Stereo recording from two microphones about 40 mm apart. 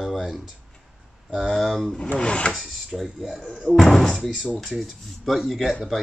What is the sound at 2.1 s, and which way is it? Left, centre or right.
Speech, left.